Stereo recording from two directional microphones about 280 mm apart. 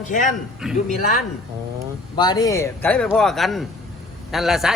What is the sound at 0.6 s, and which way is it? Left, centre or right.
Speech, centre.